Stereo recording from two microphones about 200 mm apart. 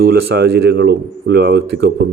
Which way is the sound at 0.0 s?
50° right (ahead or behind).